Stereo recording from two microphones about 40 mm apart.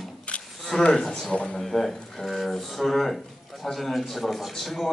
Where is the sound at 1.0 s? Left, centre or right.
Centre.